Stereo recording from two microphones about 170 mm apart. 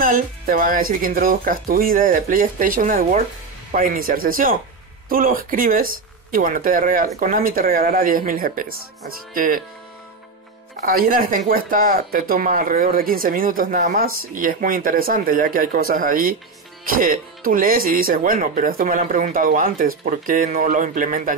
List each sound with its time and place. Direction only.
0.0 s speech: 55° right (ahead or behind)
10.8 s speech: 60° right (ahead or behind)